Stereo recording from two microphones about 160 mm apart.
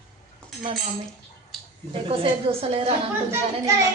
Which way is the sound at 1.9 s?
35° right (ahead or behind).